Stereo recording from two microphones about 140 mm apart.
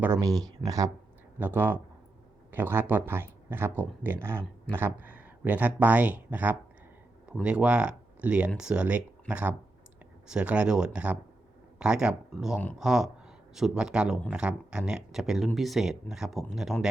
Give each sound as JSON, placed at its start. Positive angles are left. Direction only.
{"t": 0.0, "sound": "speech", "side_deg": -20}
{"t": 1.4, "sound": "speech", "side_deg": -15}